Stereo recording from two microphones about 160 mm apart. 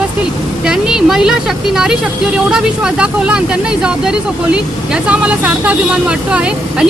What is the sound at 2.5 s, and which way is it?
Speech, 5° right (ahead or behind).